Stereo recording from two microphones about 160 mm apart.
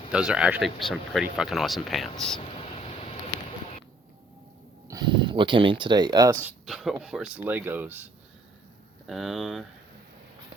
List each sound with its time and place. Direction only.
0.1 s speech: 5° right (ahead or behind)
2.4 s vehicle: 40° left (ahead or behind)
4.9 s speech: 25° right (ahead or behind)
6.4 s speech: centre (ahead or behind)
9.0 s speech: centre (ahead or behind)